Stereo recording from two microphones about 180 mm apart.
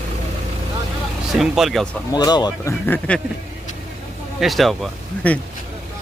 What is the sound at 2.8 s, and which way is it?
Speech, 10° left (ahead or behind).